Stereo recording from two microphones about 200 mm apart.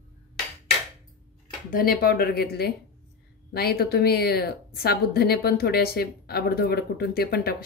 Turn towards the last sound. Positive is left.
turn(degrees=50)  # may be behind; listen again after turning